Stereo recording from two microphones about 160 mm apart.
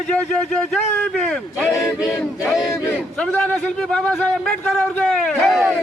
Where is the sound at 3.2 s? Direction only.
5° left (ahead or behind).